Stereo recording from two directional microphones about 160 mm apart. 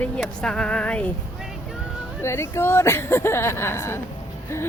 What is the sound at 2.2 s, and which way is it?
Speech, 15° left (ahead or behind).